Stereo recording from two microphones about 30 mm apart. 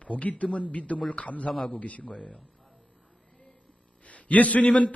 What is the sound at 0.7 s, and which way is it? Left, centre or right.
A man's voice, left.